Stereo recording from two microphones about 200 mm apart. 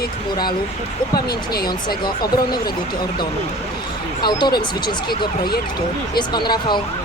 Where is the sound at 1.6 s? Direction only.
20° left (ahead or behind).